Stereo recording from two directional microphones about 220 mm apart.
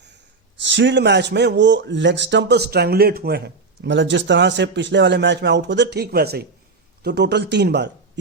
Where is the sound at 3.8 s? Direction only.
55° right (ahead or behind).